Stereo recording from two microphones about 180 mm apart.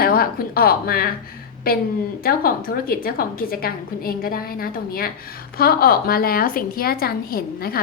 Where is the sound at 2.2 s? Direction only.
55° left (ahead or behind).